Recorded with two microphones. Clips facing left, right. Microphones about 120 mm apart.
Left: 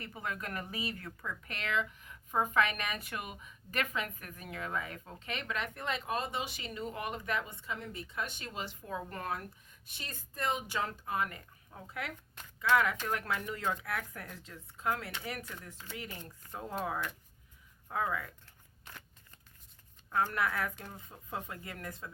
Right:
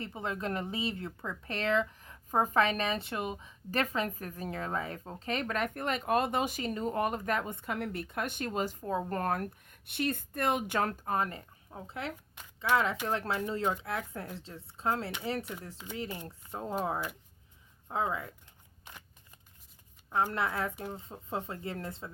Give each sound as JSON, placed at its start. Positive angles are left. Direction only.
{"t": 0.0, "sound": "speech", "side_deg": -25}
{"t": 17.8, "sound": "speech", "side_deg": -25}
{"t": 20.1, "sound": "speech", "side_deg": -20}